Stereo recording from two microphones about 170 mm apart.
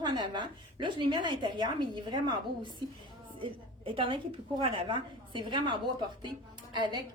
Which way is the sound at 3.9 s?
30° right (ahead or behind).